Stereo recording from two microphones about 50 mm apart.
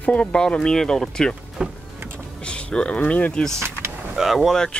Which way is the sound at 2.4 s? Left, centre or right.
Left.